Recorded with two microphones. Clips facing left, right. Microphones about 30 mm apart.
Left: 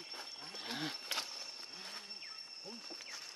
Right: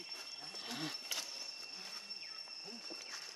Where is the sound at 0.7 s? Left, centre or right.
Centre.